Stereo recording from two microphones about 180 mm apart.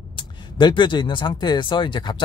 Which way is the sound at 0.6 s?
25° left (ahead or behind).